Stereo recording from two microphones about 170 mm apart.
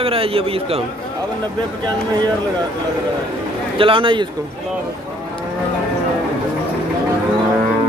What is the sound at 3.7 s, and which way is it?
Speech, 30° right (ahead or behind).